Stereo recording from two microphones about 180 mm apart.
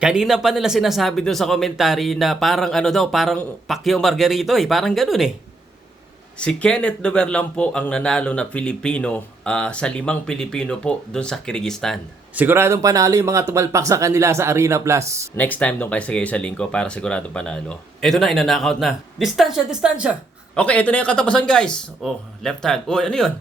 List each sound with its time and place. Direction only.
0.0 s speech: 5° right (ahead or behind)
6.4 s speech: 5° left (ahead or behind)
12.4 s speech: 10° right (ahead or behind)
15.4 s speech: 10° left (ahead or behind)
20.6 s speech: 5° left (ahead or behind)